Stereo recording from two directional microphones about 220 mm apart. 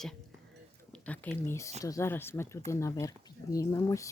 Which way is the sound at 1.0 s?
5° left (ahead or behind).